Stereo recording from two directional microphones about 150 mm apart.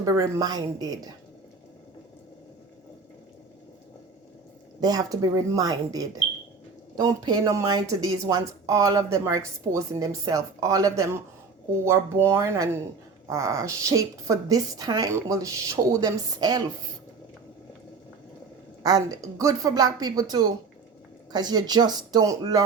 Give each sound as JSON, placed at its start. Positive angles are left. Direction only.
{"t": 0.0, "sound": "speech", "side_deg": -25}
{"t": 4.8, "sound": "speech", "side_deg": -25}
{"t": 18.8, "sound": "speech", "side_deg": -25}